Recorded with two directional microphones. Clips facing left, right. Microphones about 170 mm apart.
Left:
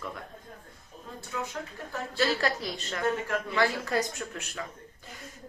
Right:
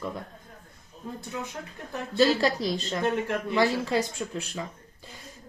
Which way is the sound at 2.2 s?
35° right (ahead or behind).